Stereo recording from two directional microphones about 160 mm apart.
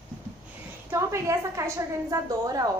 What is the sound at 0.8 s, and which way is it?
Speech, 15° right (ahead or behind).